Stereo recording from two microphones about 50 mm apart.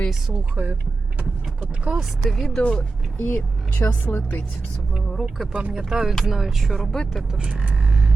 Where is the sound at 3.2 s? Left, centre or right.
Left.